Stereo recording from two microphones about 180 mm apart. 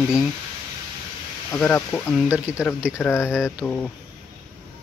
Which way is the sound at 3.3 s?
5° right (ahead or behind).